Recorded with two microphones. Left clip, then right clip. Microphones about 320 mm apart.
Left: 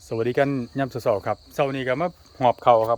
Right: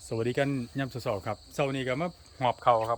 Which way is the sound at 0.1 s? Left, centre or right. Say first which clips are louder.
Left 7 dB; centre.